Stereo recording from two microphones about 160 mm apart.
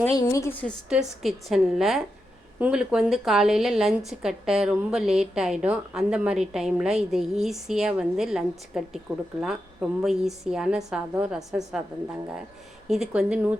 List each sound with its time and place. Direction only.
0.2 s a woman's voice: 20° left (ahead or behind)
0.9 s a woman's voice: 5° right (ahead or behind)